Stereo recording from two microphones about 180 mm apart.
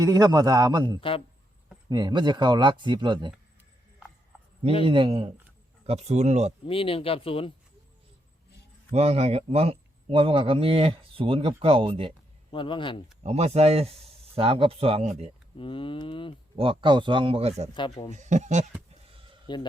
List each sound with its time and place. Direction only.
0.0 s speech: 20° right (ahead or behind)
4.9 s speech: 30° right (ahead or behind)
6.7 s speech: 30° left (ahead or behind)
8.9 s speech: 35° right (ahead or behind)
12.5 s speech: 30° left (ahead or behind)
13.2 s speech: 35° right (ahead or behind)
15.5 s speech: 30° left (ahead or behind)
16.6 s speech: 30° right (ahead or behind)
17.7 s speech: 25° left (ahead or behind)
18.1 s speech: 40° right (ahead or behind)
19.5 s speech: 25° left (ahead or behind)